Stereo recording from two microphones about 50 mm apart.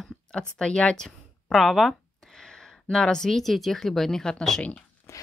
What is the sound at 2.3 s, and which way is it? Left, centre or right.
Speech, centre.